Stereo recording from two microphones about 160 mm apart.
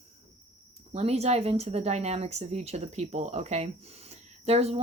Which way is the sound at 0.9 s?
40° right (ahead or behind).